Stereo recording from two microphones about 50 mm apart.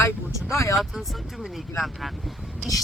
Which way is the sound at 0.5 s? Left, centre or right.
Left.